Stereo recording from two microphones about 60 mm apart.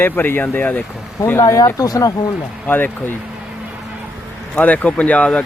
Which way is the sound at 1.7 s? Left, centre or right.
Left.